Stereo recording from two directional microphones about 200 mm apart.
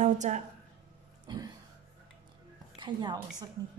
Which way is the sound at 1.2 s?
20° right (ahead or behind).